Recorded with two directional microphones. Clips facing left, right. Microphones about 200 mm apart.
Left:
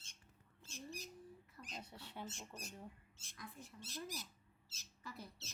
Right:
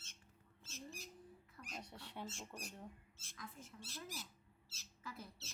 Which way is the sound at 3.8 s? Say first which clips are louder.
Left 3 dB; 15° left (ahead or behind).